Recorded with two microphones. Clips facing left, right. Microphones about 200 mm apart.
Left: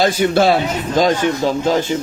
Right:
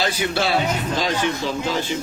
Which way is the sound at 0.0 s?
45° left (ahead or behind).